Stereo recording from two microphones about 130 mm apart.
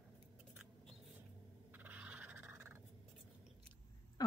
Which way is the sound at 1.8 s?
10° right (ahead or behind).